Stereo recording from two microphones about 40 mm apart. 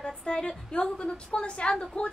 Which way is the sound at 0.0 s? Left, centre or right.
Left.